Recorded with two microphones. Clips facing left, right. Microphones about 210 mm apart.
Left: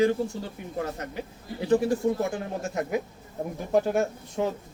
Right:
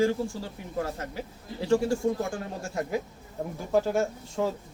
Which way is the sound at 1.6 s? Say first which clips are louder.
Left 1 dB; 20° left (ahead or behind).